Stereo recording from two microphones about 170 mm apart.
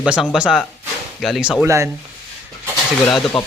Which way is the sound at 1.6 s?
15° right (ahead or behind).